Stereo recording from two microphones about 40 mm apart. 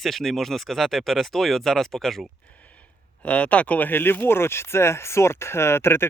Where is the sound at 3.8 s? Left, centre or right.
Left.